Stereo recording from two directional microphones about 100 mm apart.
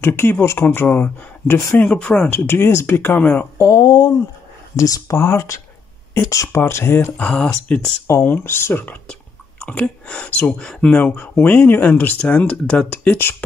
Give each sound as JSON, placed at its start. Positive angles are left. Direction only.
{"t": 0.0, "sound": "speech", "side_deg": 25}
{"t": 3.5, "sound": "speech", "side_deg": 35}
{"t": 7.2, "sound": "speech", "side_deg": 10}
{"t": 8.1, "sound": "speech", "side_deg": 20}